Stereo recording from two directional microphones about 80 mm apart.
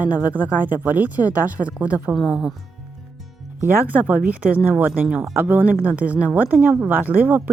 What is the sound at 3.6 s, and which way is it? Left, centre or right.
Speech, right.